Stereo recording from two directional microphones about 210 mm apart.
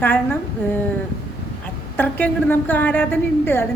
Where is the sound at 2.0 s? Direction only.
10° left (ahead or behind).